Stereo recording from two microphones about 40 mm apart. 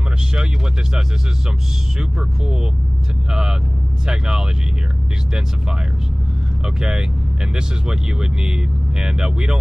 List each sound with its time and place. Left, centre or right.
2.0 s speech: centre
6.6 s speech: centre